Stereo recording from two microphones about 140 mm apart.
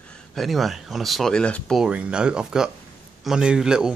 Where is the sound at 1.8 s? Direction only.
10° right (ahead or behind).